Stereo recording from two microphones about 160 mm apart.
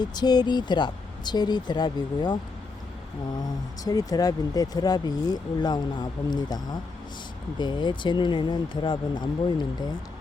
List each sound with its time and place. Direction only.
0.0 s speech: 25° left (ahead or behind)
3.8 s speech: 25° left (ahead or behind)